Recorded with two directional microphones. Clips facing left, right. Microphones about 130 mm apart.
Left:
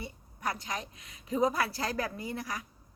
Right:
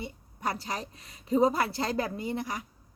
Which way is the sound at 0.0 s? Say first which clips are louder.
Right 3 dB; 30° right (ahead or behind).